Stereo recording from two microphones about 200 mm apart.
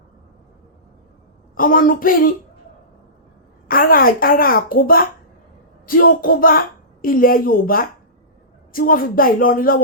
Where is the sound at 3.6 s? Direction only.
45° left (ahead or behind).